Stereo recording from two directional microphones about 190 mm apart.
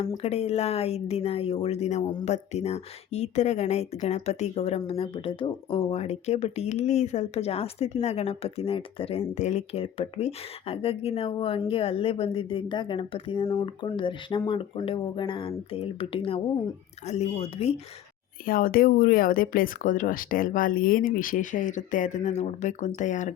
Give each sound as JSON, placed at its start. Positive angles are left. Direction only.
{"t": 0.2, "sound": "speech", "side_deg": 35}
{"t": 18.4, "sound": "speech", "side_deg": 50}